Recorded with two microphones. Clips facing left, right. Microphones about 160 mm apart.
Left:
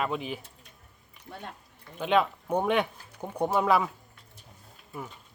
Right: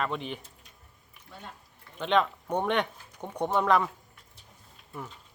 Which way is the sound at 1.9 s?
10° left (ahead or behind).